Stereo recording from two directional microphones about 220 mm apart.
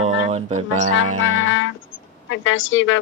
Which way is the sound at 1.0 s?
70° right (ahead or behind).